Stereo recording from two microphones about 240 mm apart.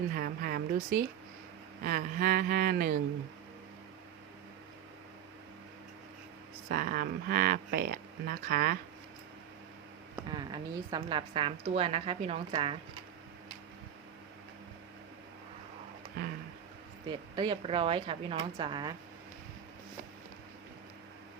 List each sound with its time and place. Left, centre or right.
0.1 s speech: right
6.7 s speech: right
10.2 s a woman's voice: centre
17.1 s a woman's voice: centre